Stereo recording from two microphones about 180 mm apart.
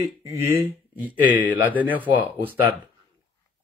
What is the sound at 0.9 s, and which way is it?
Speech, 10° right (ahead or behind).